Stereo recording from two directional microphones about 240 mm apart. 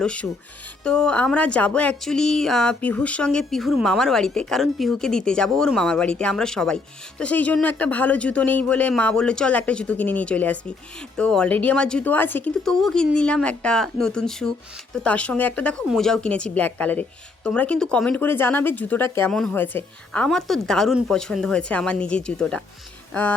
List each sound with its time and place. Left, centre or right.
0.0 s speech: centre